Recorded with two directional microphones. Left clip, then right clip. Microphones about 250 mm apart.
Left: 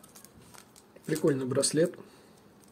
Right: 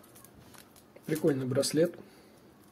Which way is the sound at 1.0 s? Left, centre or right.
Centre.